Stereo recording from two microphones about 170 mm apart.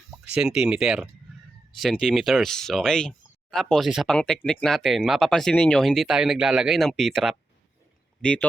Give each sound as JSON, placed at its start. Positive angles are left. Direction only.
{"t": 0.3, "sound": "speech", "side_deg": -5}